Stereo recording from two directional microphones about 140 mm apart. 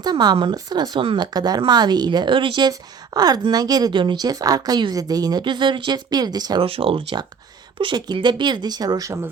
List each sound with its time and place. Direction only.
0.0 s speech: 30° right (ahead or behind)
6.7 s speech: 40° right (ahead or behind); by 9.3 s 25° right (ahead or behind)